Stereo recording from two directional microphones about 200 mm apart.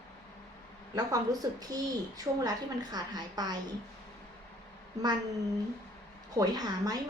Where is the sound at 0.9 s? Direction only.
20° right (ahead or behind).